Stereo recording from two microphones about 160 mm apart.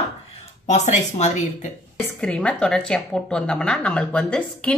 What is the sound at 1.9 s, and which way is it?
Speech, 5° left (ahead or behind).